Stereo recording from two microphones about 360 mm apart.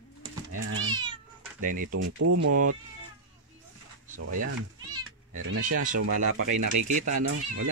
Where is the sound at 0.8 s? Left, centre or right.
Centre.